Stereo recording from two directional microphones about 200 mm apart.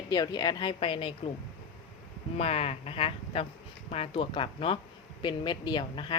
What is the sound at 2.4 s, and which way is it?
A woman's voice, 30° left (ahead or behind).